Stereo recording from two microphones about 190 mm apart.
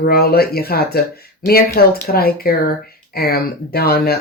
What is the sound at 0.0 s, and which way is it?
Speech, 50° left (ahead or behind).